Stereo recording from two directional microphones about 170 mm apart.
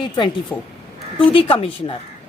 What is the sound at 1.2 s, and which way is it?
Speech, 30° left (ahead or behind).